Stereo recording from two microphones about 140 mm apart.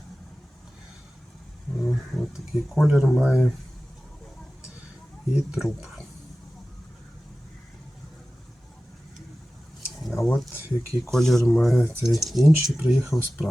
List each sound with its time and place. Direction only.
1.8 s speech: 5° left (ahead or behind)
5.3 s speech: 5° right (ahead or behind)
10.0 s a sound: centre (ahead or behind)
10.5 s speech: 20° left (ahead or behind)
11.1 s speech: 5° left (ahead or behind)